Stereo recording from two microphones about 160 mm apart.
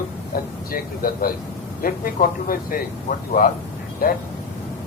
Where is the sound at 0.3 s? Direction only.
65° left (ahead or behind).